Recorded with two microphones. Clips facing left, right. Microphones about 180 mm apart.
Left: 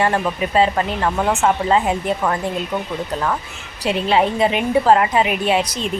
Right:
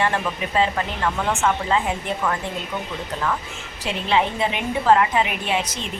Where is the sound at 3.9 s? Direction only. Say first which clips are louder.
Left 5 dB; 40° left (ahead or behind).